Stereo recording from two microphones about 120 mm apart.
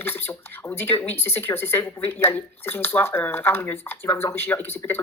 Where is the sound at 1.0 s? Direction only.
20° left (ahead or behind).